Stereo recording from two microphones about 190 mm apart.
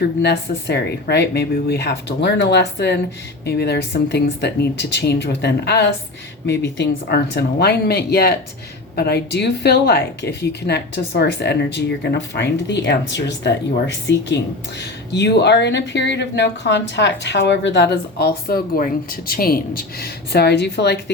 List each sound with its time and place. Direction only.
0.2 s speech: 60° left (ahead or behind)